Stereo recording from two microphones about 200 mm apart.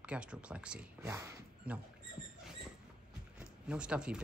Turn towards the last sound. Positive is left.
turn(degrees=-5)  # may be behind; listen again after turning